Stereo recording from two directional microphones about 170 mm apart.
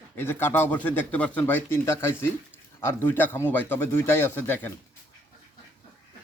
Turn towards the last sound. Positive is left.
turn(degrees=10)  # may be behind; listen again after turning